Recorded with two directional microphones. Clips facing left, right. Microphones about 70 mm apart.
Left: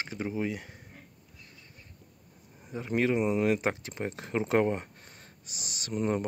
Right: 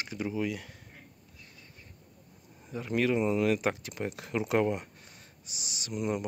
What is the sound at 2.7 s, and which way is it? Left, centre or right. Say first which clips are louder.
Speech: left 1 dB; left.